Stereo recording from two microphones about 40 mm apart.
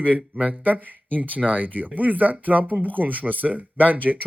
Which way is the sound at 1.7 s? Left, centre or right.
Right.